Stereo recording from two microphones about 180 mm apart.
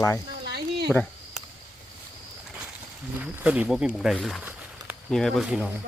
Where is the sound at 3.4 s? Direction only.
10° right (ahead or behind).